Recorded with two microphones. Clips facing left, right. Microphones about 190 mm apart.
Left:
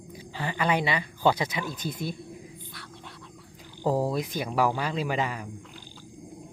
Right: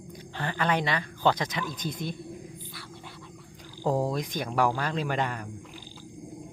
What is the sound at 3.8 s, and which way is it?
Speech, 5° left (ahead or behind).